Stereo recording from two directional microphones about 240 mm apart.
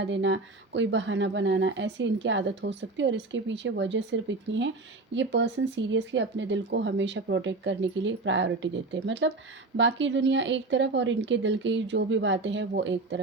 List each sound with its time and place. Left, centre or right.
0.0 s speech: right